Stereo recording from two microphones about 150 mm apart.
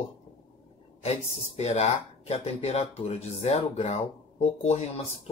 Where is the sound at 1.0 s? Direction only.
45° left (ahead or behind).